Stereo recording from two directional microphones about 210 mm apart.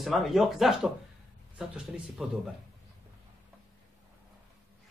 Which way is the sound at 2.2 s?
5° right (ahead or behind).